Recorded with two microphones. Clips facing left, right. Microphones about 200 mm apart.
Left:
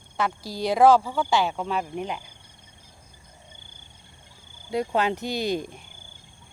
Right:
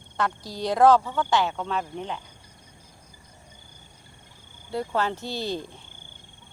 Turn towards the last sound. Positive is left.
turn(degrees=15)  # may be behind; listen again after turning